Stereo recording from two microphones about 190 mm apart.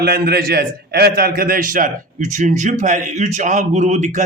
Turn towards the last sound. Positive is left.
turn(degrees=-40)  # may be behind; listen again after turning